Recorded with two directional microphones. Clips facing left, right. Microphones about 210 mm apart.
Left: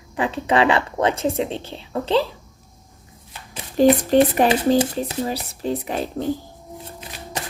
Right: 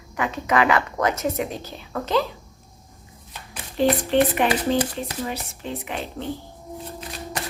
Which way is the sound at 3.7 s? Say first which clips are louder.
Left 5 dB; 40° left (ahead or behind).